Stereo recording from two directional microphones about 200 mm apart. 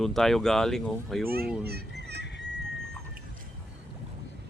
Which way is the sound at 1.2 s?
50° right (ahead or behind).